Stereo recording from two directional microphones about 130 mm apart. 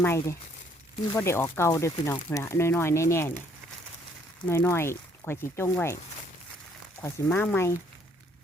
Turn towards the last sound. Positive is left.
turn(degrees=15)  # may be behind; listen again after turning